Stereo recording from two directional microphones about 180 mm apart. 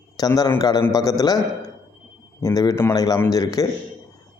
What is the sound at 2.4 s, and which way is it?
A man's voice, 20° left (ahead or behind).